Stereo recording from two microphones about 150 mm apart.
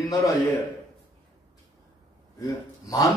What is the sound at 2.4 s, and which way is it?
Speech, 20° left (ahead or behind).